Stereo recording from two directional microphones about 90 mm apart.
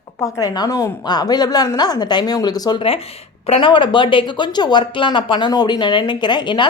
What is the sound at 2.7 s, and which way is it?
Speech, 90° left.